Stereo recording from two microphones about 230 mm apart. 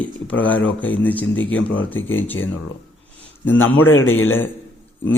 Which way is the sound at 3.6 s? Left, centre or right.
Left.